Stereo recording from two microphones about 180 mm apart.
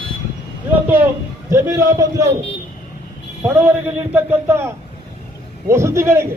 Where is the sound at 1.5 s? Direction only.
15° right (ahead or behind).